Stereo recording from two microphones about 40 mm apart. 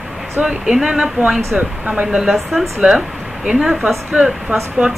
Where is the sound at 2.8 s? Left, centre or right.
Right.